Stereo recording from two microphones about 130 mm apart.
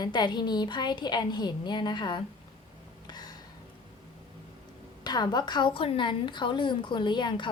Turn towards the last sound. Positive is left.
turn(degrees=35)  # may be behind; listen again after turning